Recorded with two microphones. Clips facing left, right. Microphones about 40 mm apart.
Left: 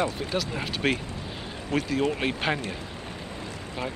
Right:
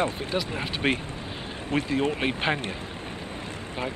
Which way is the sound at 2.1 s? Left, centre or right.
Centre.